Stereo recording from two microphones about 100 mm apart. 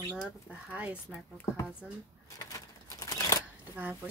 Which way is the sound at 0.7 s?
15° right (ahead or behind).